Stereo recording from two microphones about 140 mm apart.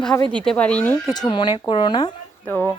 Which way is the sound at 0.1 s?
15° left (ahead or behind).